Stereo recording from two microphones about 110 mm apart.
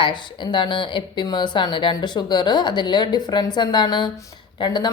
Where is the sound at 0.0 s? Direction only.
45° left (ahead or behind).